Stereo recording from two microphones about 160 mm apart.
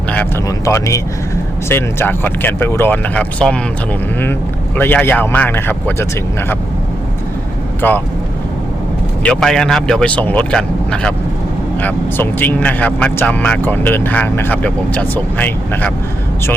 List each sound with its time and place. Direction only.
0.4 s speech: 20° left (ahead or behind)
4.8 s speech: 10° left (ahead or behind)
7.8 s speech: 10° left (ahead or behind)
9.2 s speech: 5° left (ahead or behind)